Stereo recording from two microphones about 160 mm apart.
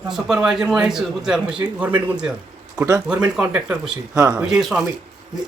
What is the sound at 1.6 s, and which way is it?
Speech, 20° right (ahead or behind).